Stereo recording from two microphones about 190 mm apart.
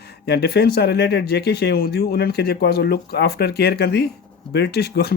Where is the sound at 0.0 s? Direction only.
60° left (ahead or behind).